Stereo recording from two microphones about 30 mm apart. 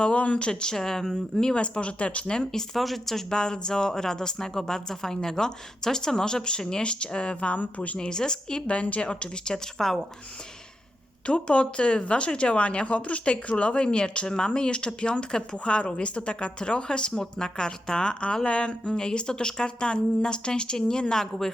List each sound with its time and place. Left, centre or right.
0.0 s speech: left; by 1.5 s centre
1.5 s a woman's voice: left
2.2 s speech: left
2.7 s speech: centre
3.2 s speech: left
6.8 s a woman's voice: left
7.5 s speech: left
7.9 s speech: left
8.6 s a woman's voice: left
9.7 s a woman's voice: centre
11.3 s a woman's voice: left
15.5 s a woman's voice: left
17.1 s a woman's voice: left